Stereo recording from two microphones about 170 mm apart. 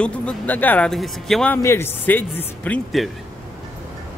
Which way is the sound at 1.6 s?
15° left (ahead or behind).